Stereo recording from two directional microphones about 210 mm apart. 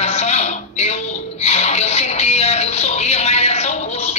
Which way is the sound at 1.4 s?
30° left (ahead or behind).